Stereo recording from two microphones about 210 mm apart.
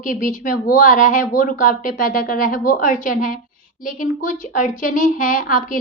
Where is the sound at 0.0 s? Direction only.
40° left (ahead or behind).